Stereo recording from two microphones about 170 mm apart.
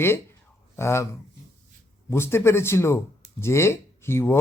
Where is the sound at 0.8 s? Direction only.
15° left (ahead or behind).